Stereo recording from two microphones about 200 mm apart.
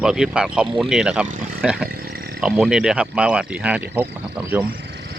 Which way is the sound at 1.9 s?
50° right (ahead or behind).